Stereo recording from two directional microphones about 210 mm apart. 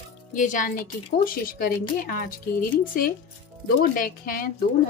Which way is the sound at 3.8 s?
40° left (ahead or behind).